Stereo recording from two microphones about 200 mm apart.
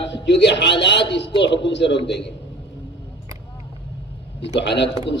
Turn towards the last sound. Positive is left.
turn(degrees=60)  # may be behind; listen again after turning